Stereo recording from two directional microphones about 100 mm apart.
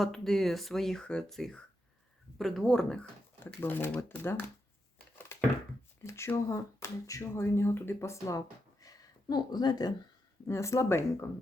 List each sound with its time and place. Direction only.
0.0 s speech: centre (ahead or behind)
3.4 s speech: 20° left (ahead or behind)
6.0 s speech: 25° left (ahead or behind); by 9.9 s 40° left (ahead or behind)
10.4 s speech: 30° left (ahead or behind)